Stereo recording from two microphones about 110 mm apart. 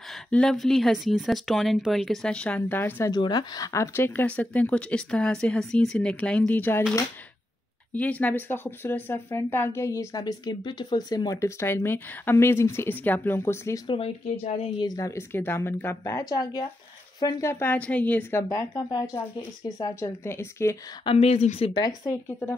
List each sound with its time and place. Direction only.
0.1 s speech: 5° left (ahead or behind)
2.8 s speech: 20° left (ahead or behind)
3.1 s speech: 40° left (ahead or behind); by 6.8 s 15° left (ahead or behind)
7.9 s speech: 15° left (ahead or behind)
13.8 s speech: 60° left (ahead or behind)
14.8 s speech: 35° left (ahead or behind); by 18.4 s 15° left (ahead or behind)
18.5 s speech: 25° left (ahead or behind)
21.0 s speech: 60° left (ahead or behind)
21.8 s speech: 30° left (ahead or behind)